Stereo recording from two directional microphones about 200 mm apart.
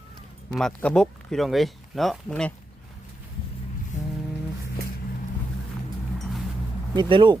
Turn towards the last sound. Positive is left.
turn(degrees=-25)  # may be behind; listen again after turning